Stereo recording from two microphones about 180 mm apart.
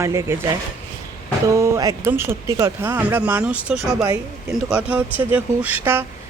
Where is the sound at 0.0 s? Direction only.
15° right (ahead or behind).